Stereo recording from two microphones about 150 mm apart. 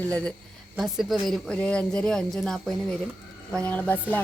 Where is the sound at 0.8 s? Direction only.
Centre (ahead or behind).